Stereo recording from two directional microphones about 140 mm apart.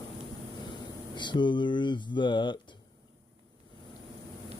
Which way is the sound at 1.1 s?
35° left (ahead or behind).